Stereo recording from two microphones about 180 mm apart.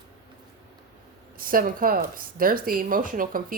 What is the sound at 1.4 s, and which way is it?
A woman's voice, 50° right (ahead or behind).